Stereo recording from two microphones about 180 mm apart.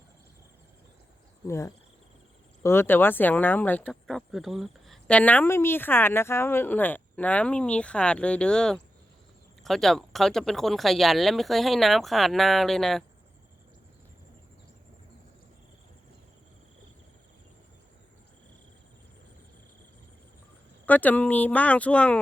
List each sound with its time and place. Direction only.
1.5 s speech: 15° left (ahead or behind)
20.8 s speech: 10° left (ahead or behind)